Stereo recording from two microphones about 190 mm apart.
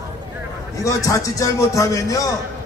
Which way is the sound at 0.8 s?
15° left (ahead or behind).